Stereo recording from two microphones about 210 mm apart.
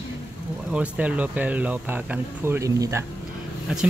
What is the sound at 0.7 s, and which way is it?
Speech, 5° right (ahead or behind).